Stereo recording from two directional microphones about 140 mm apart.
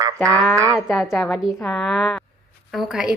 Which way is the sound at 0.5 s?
20° right (ahead or behind).